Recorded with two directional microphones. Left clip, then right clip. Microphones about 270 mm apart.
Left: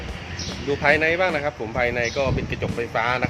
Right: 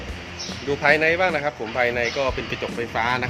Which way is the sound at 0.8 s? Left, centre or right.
Centre.